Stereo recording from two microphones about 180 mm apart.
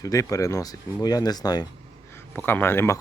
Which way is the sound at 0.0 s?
20° left (ahead or behind).